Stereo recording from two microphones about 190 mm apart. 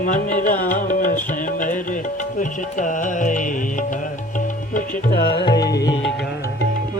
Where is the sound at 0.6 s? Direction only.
45° left (ahead or behind); by 5.6 s 60° left (ahead or behind).